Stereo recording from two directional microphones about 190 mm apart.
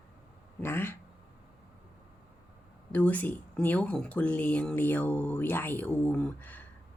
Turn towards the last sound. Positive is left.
turn(degrees=10)  # may be behind; listen again after turning